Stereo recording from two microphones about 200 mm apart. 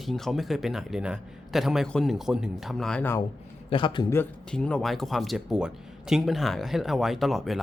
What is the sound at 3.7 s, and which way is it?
Speech, 25° left (ahead or behind).